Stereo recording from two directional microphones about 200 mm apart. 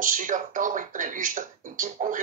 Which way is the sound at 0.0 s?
40° right (ahead or behind).